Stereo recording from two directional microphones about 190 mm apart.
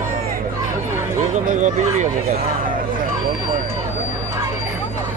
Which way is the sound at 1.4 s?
40° right (ahead or behind).